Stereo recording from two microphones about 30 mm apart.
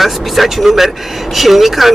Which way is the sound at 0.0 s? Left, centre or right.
Centre.